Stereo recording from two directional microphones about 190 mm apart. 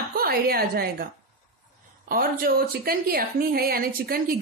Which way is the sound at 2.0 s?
50° right (ahead or behind).